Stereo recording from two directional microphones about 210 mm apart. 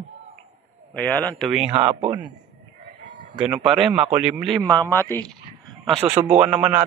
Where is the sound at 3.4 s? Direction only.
5° right (ahead or behind).